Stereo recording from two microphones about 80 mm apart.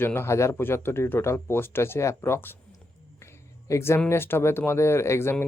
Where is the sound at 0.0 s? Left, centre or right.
Left.